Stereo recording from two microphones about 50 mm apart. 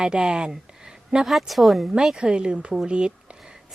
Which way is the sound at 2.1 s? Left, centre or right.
Centre.